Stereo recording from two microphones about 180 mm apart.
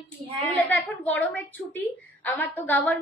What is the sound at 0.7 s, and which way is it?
A woman's voice, 10° left (ahead or behind).